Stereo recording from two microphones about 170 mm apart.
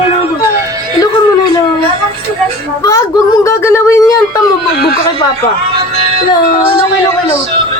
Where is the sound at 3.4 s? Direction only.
15° left (ahead or behind).